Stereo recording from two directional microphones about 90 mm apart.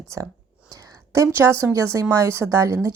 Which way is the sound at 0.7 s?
40° right (ahead or behind).